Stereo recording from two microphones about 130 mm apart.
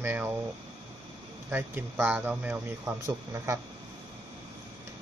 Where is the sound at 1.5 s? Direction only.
15° right (ahead or behind).